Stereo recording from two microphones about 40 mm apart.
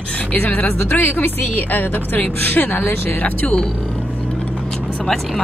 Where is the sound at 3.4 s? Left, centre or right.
Centre.